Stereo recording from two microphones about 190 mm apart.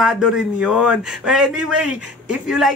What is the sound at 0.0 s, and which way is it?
A man's voice, centre (ahead or behind).